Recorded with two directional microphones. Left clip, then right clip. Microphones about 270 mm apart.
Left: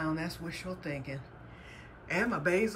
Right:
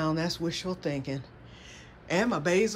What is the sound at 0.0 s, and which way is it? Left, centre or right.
Speech, centre.